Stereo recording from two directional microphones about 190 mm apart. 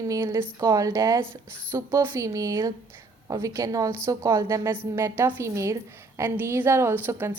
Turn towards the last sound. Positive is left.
turn(degrees=-10)  # may be behind; listen again after turning